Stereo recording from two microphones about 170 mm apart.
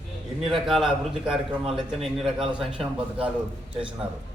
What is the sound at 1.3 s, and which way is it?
Speech, 30° right (ahead or behind).